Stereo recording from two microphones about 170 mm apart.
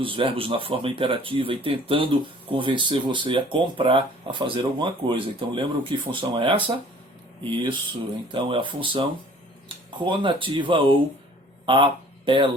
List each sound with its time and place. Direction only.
0.0 s speech: 30° right (ahead or behind)